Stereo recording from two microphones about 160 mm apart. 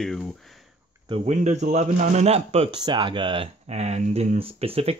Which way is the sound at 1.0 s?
35° right (ahead or behind).